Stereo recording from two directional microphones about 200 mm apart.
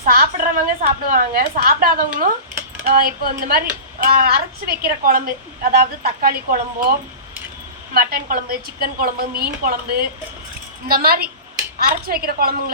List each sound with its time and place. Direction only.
0.0 s a woman's voice: 45° right (ahead or behind)
7.9 s a woman's voice: 45° right (ahead or behind)